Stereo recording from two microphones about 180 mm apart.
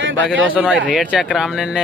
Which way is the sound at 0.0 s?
90° right.